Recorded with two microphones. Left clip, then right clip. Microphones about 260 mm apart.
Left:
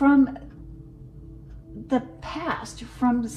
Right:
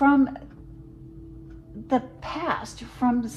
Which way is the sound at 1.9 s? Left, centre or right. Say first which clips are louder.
Right 1 dB; right.